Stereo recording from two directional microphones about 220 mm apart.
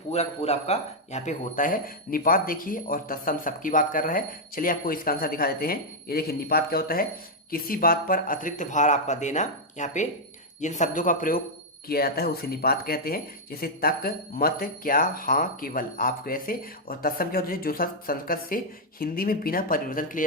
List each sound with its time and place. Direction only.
0.1 s speech: 30° left (ahead or behind)